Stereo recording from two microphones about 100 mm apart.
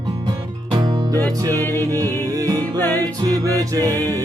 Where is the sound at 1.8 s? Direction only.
35° right (ahead or behind).